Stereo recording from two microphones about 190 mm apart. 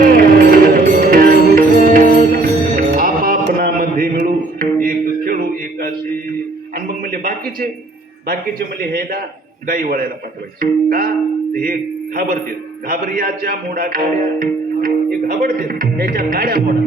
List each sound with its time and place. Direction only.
0.0 s music: 50° right (ahead or behind)
7.0 s a sound: 50° right (ahead or behind)
8.8 s a man's voice: 50° right (ahead or behind)